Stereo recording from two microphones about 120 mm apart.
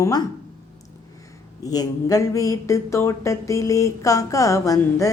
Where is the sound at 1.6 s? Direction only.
30° left (ahead or behind).